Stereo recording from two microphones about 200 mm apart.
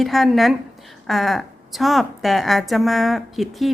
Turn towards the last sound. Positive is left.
turn(degrees=0)  # may be behind; listen again after turning